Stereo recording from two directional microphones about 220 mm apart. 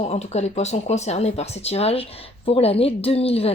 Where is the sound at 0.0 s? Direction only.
30° left (ahead or behind).